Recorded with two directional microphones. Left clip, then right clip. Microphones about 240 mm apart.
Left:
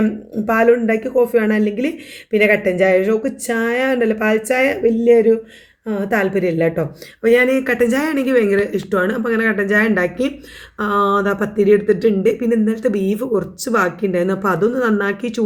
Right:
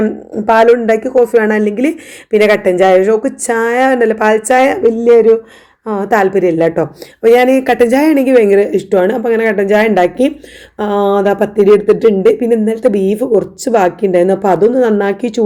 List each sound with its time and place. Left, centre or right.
0.0 s a woman's voice: centre